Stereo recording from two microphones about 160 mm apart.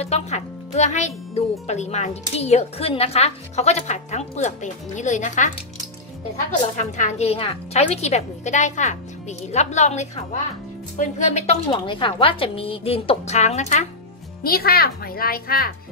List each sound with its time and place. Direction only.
0.0 s a child's voice: 45° left (ahead or behind)
6.8 s a child's voice: 45° left (ahead or behind)
11.7 s a woman's voice: 30° left (ahead or behind)
14.4 s a woman's voice: 70° left (ahead or behind)